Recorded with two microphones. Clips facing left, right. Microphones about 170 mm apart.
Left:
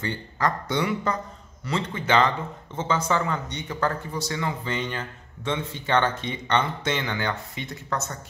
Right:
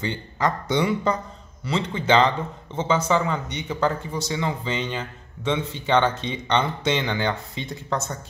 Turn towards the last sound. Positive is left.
turn(degrees=-25)  # may be behind; listen again after turning